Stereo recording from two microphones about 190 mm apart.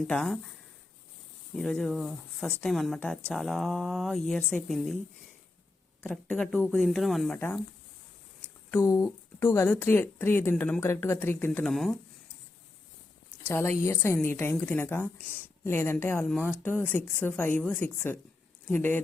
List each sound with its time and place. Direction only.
0.1 s speech: 5° left (ahead or behind)
1.5 s speech: centre (ahead or behind)
6.0 s speech: 5° left (ahead or behind)
7.3 s speech: 10° left (ahead or behind)
8.7 s speech: 10° left (ahead or behind)
13.5 s speech: 10° left (ahead or behind)